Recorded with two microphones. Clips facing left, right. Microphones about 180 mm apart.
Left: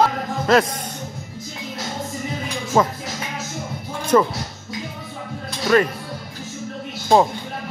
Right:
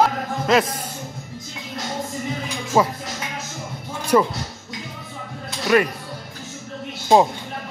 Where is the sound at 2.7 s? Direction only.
10° right (ahead or behind).